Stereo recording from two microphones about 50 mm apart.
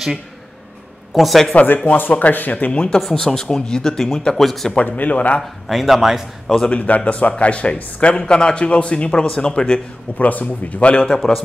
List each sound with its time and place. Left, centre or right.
1.1 s speech: centre
1.5 s a man's voice: left
3.0 s speech: centre
4.7 s a man's voice: left
5.4 s speech: centre
6.4 s speech: centre
6.7 s a man's voice: left
10.1 s a man's voice: left